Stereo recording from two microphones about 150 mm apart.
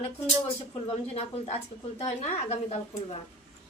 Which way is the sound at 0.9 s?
40° left (ahead or behind).